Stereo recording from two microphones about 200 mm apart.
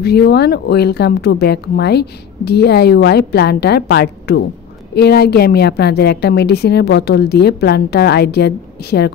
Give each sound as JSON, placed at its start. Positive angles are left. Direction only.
{"t": 0.0, "sound": "speech", "side_deg": 55}